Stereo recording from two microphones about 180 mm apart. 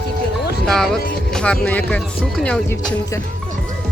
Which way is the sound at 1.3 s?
5° left (ahead or behind).